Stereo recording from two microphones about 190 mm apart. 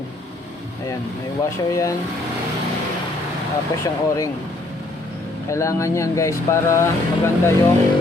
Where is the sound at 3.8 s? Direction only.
15° left (ahead or behind).